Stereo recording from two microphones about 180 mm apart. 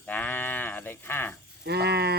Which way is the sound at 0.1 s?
10° left (ahead or behind).